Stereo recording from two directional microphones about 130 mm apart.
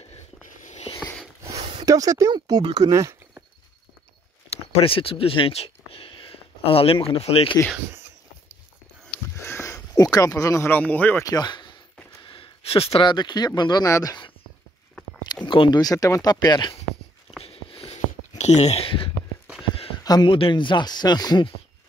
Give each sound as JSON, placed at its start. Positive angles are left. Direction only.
{"t": 1.5, "sound": "a sound", "side_deg": -55}
{"t": 1.8, "sound": "speech", "side_deg": -25}
{"t": 4.5, "sound": "speech", "side_deg": 45}
{"t": 9.4, "sound": "speech", "side_deg": 20}
{"t": 11.2, "sound": "speech", "side_deg": 30}
{"t": 15.4, "sound": "speech", "side_deg": 40}
{"t": 17.4, "sound": "a sound", "side_deg": 50}
{"t": 18.4, "sound": "speech", "side_deg": 60}
{"t": 20.0, "sound": "speech", "side_deg": 30}